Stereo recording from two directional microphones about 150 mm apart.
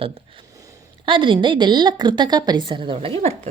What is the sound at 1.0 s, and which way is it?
A woman's voice, 35° right (ahead or behind).